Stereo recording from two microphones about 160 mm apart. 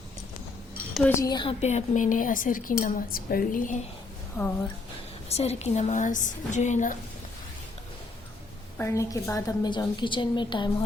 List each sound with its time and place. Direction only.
1.1 s a woman's voice: 25° left (ahead or behind)
1.6 s a woman's voice: 45° left (ahead or behind)
4.4 s a woman's voice: centre (ahead or behind)
5.3 s a woman's voice: 40° left (ahead or behind)
8.8 s a woman's voice: 20° left (ahead or behind)